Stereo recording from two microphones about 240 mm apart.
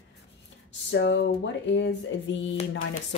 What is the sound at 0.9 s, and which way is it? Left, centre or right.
Speech, left.